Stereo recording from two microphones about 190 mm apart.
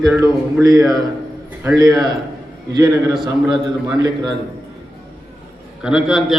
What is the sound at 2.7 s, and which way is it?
Speech, 20° right (ahead or behind).